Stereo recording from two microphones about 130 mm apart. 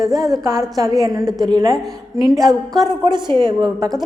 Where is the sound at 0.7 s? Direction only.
30° right (ahead or behind).